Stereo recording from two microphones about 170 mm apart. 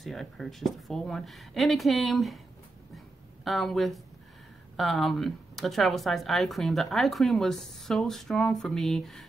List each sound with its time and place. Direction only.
0.0 s speech: centre (ahead or behind)
3.4 s speech: centre (ahead or behind)